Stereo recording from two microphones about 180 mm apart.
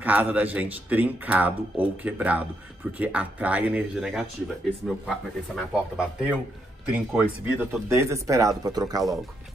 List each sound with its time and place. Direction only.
0.0 s speech: 10° right (ahead or behind)